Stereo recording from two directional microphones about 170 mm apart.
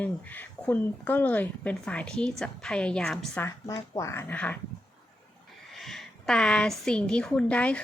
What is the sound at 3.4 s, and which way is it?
Speech, 15° left (ahead or behind).